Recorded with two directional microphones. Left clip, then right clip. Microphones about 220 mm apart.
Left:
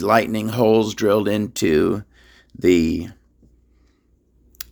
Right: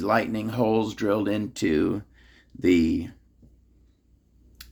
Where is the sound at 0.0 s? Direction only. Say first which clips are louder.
Left 7 dB; 50° left (ahead or behind).